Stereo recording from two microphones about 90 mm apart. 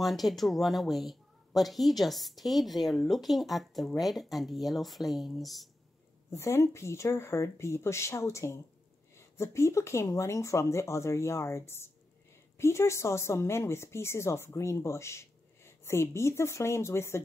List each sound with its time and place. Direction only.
0.0 s speech: centre (ahead or behind)
6.3 s a woman's voice: 30° left (ahead or behind)